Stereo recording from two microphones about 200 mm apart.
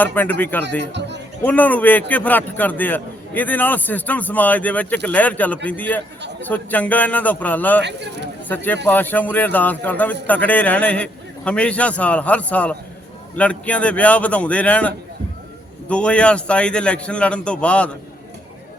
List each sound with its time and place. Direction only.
0.0 s a man's voice: 10° left (ahead or behind)
0.8 s music: 60° right (ahead or behind)
1.5 s a man's voice: 10° left (ahead or behind)
7.8 s speech: 60° right (ahead or behind)
8.4 s a man's voice: 10° left (ahead or behind)